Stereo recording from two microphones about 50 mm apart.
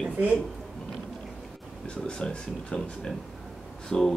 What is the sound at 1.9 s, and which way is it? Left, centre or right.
Speech, centre.